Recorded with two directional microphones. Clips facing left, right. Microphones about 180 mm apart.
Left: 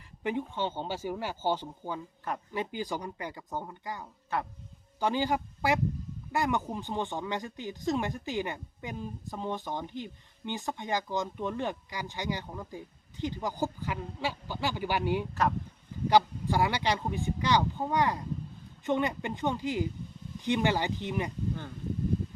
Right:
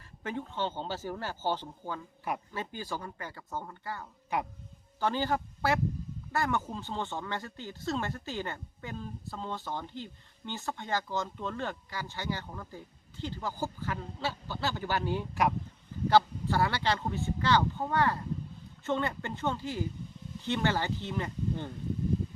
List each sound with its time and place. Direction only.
0.2 s speech: 15° left (ahead or behind)
4.3 s speech: 15° right (ahead or behind)
4.9 s a man's voice: 15° left (ahead or behind)